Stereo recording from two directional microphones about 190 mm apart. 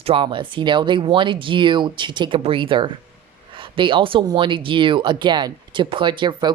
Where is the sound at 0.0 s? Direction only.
25° right (ahead or behind).